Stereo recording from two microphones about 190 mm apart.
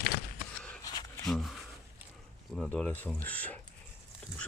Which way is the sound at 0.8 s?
20° left (ahead or behind).